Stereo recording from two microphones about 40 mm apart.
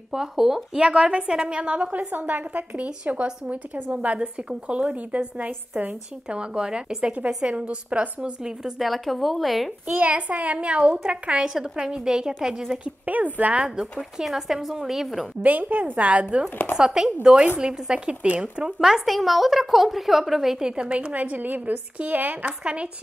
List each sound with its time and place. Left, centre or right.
0.1 s a woman's voice: centre
0.7 s a woman's voice: right
4.2 s a woman's voice: right
6.2 s a woman's voice: right
8.7 s a woman's voice: centre
9.9 s a woman's voice: right
11.6 s a woman's voice: centre
12.8 s a woman's voice: right
14.1 s a woman's voice: centre
15.4 s a woman's voice: right
16.7 s a woman's voice: centre
19.0 s a woman's voice: centre
20.7 s a woman's voice: right
21.1 s a woman's voice: right